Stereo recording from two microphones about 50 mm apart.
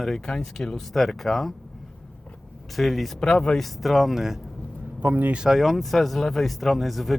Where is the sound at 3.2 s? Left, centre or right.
Centre.